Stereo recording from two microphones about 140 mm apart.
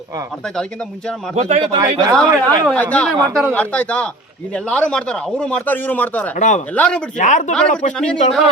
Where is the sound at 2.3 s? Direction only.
25° right (ahead or behind).